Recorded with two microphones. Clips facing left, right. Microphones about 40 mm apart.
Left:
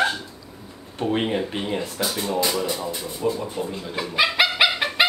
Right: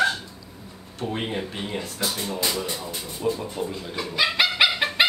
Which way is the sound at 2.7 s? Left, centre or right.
Left.